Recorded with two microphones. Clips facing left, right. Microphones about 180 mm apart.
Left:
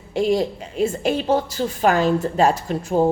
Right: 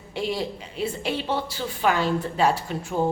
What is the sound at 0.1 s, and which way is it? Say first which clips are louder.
A woman's voice: left 8 dB; 45° left (ahead or behind).